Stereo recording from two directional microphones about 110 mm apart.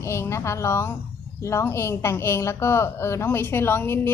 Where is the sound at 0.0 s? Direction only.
25° left (ahead or behind).